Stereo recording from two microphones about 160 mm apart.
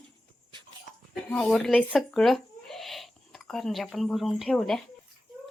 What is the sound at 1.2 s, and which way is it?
Speech, 10° left (ahead or behind).